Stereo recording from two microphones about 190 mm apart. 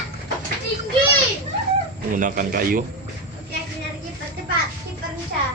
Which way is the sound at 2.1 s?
45° right (ahead or behind).